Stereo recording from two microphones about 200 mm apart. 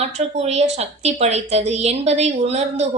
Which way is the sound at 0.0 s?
30° right (ahead or behind).